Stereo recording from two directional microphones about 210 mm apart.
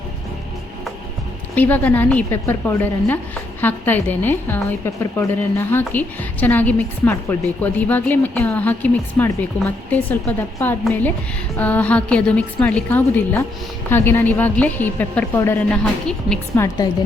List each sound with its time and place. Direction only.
1.5 s a woman's voice: 10° left (ahead or behind)
16.6 s a woman's voice: 20° left (ahead or behind)